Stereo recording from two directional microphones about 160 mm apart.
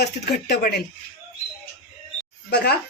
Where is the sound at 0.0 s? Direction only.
90° left.